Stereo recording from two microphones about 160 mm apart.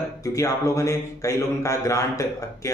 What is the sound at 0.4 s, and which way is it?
A man's voice, 20° left (ahead or behind).